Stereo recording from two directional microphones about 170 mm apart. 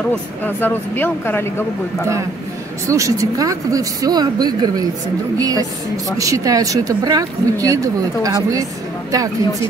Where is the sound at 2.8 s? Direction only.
20° right (ahead or behind).